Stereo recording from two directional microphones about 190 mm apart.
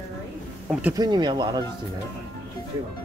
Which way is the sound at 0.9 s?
25° right (ahead or behind).